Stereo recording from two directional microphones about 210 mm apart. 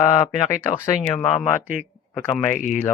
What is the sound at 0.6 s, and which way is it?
Speech, 10° left (ahead or behind).